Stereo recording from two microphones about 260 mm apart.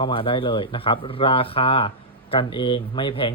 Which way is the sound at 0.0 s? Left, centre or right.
Centre.